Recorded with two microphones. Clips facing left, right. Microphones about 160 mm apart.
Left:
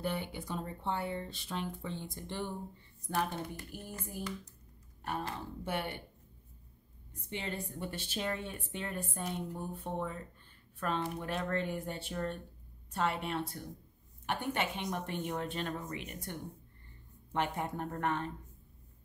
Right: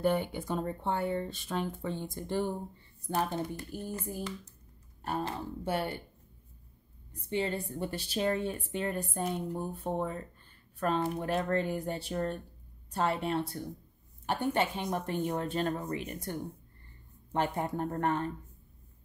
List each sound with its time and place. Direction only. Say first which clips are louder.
0.0 s speech: right 8 dB; 50° right (ahead or behind)
3.2 s speech: right 3 dB; 30° right (ahead or behind)
7.2 s speech: right 7 dB; 35° right (ahead or behind)